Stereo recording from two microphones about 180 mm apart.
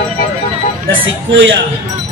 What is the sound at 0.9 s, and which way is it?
Speech, 90° right.